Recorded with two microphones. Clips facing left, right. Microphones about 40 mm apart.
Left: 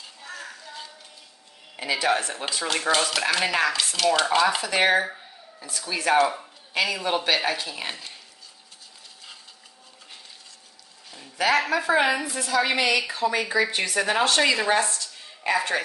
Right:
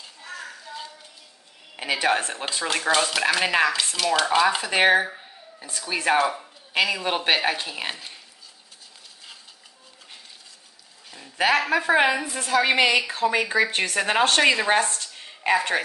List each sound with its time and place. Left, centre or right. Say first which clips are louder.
0.0 s music: right 1 dB; centre
1.8 s speech: right 1 dB; right
2.6 s speech: right 1 dB; centre
3.9 s dishes: even; centre
4.6 s a sound: right 2 dB; centre
5.7 s speech: right 1 dB; right
6.1 s dishes: left 3 dB; centre
6.7 s speech: right 1 dB; centre
11.3 s speech: right 1 dB; right
12.4 s a woman's voice: right 3 dB; right
13.7 s a woman's voice: right 2 dB; right
13.9 s a woman's voice: right 1 dB; right
15.4 s speech: right 2 dB; right